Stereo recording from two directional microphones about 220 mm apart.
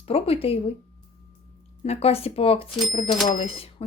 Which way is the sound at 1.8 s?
30° left (ahead or behind).